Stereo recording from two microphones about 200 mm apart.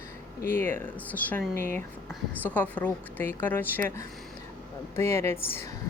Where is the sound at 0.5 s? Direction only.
10° left (ahead or behind).